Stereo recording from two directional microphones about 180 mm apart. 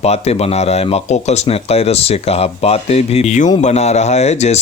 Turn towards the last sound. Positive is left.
turn(degrees=35)  # may be behind; listen again after turning